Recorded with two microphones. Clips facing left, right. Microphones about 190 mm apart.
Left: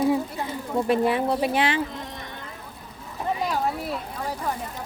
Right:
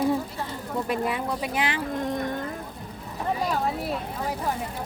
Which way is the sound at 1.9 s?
50° right (ahead or behind).